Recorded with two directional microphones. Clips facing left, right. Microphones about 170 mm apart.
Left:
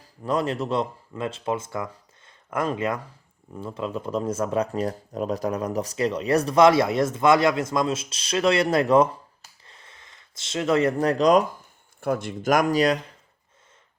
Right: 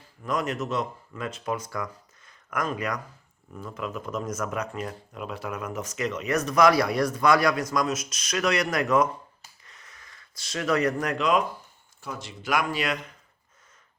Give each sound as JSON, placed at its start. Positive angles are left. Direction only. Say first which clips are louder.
{"t": 0.0, "sound": "speech", "louder": "left 4 dB", "side_deg": 35}
{"t": 9.6, "sound": "a sound", "louder": "left 3 dB", "side_deg": 30}
{"t": 11.9, "sound": "speech", "louder": "left 12 dB", "side_deg": 55}